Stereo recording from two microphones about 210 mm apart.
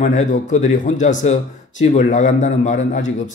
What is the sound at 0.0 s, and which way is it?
Speech, 35° left (ahead or behind).